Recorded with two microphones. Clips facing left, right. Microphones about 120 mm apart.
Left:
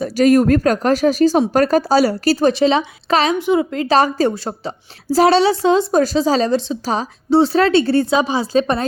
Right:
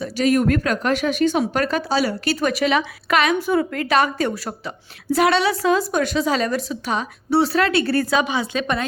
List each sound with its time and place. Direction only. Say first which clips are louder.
0.0 s a woman's voice: left 6 dB; 40° left (ahead or behind)
3.3 s a woman's voice: left 3 dB; 20° left (ahead or behind); by 8.9 s 35° left (ahead or behind)